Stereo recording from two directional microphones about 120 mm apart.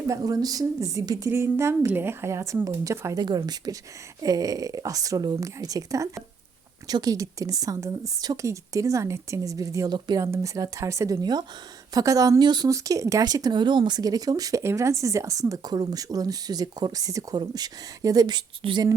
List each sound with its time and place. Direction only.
0.1 s a woman's voice: 30° right (ahead or behind)
3.2 s a woman's voice: 35° right (ahead or behind)